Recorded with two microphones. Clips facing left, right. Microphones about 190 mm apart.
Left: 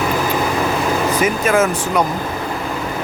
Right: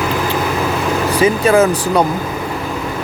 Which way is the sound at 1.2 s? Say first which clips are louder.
Right 6 dB; 30° right (ahead or behind).